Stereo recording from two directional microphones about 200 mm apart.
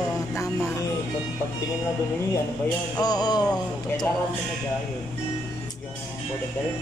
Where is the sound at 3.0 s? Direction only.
20° left (ahead or behind).